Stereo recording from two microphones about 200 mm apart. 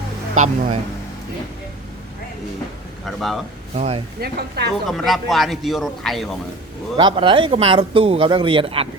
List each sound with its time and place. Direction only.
0.3 s speech: 40° right (ahead or behind)
3.2 s speech: centre (ahead or behind)
3.8 s speech: 30° right (ahead or behind)
4.2 s a woman's voice: 55° right (ahead or behind)
4.9 s speech: centre (ahead or behind)
6.9 s speech: 25° right (ahead or behind)